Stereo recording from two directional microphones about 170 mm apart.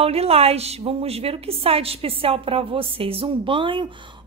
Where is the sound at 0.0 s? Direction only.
35° right (ahead or behind).